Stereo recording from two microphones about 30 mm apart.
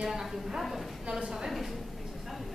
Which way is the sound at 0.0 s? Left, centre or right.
Centre.